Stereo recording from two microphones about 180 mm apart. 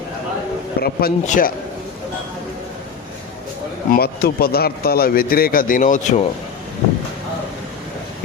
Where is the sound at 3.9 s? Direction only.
60° left (ahead or behind).